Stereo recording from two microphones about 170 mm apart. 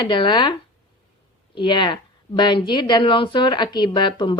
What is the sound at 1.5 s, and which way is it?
A woman's voice, 30° left (ahead or behind).